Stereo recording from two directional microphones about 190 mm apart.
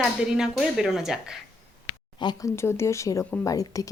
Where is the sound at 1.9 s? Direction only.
20° left (ahead or behind).